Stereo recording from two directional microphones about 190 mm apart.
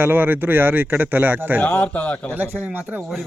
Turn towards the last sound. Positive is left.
turn(degrees=0)  # may be behind; listen again after turning